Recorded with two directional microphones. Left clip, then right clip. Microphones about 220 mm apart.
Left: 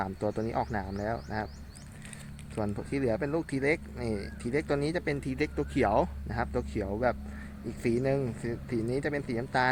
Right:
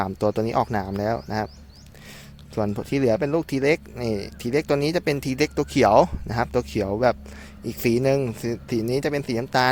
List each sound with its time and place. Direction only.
0.0 s speech: 45° right (ahead or behind)
2.6 s speech: 45° right (ahead or behind)